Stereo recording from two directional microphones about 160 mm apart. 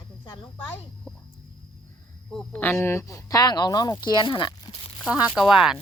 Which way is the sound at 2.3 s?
5° left (ahead or behind).